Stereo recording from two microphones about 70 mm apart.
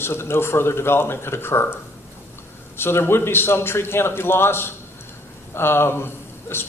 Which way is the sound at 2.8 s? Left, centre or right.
Left.